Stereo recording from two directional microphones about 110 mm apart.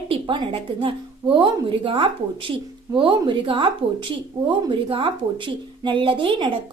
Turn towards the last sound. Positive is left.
turn(degrees=-50)  # may be behind; listen again after turning